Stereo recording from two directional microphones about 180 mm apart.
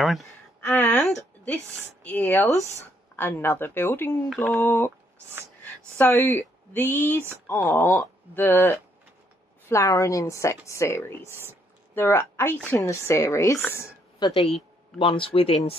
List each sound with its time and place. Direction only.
0.0 s speech: centre (ahead or behind)
0.7 s a sound: 10° left (ahead or behind)
2.0 s a woman's voice: 10° left (ahead or behind)
4.3 s mantra: centre (ahead or behind)
4.6 s a woman's voice: 15° left (ahead or behind)
15.0 s speech: 30° left (ahead or behind)